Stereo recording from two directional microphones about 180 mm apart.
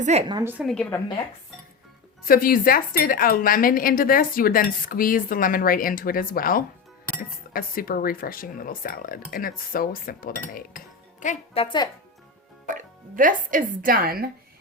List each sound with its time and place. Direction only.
0.0 s a woman's voice: 35° right (ahead or behind)
0.3 s a woman's voice: 20° right (ahead or behind)
0.5 s a woman's voice: centre (ahead or behind)
2.2 s a woman's voice: 50° left (ahead or behind)
11.6 s speech: 25° left (ahead or behind)
12.6 s speech: 45° right (ahead or behind)